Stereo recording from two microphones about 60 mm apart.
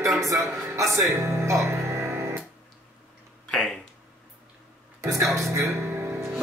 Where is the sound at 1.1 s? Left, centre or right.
Right.